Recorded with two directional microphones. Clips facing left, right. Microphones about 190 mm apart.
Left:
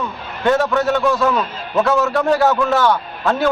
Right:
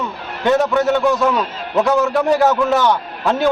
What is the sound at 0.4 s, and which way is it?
A man's voice, 15° right (ahead or behind).